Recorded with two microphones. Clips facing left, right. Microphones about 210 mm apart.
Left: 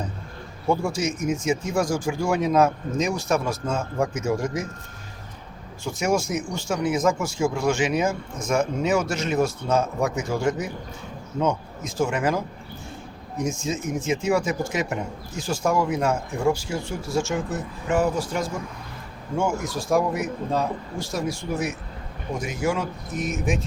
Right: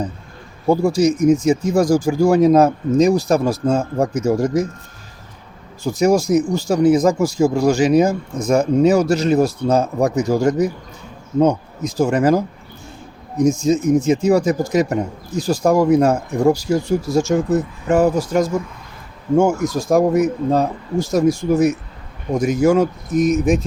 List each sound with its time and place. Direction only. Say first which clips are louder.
0.7 s speech: right 9 dB; 35° right (ahead or behind)
5.8 s speech: right 8 dB; 35° right (ahead or behind)
13.4 s speech: right 12 dB; 40° right (ahead or behind)